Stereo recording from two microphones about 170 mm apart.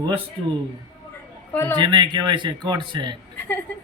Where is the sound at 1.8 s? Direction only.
25° right (ahead or behind).